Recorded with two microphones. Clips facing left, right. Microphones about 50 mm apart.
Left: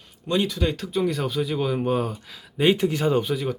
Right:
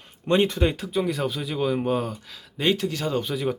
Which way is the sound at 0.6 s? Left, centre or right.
Centre.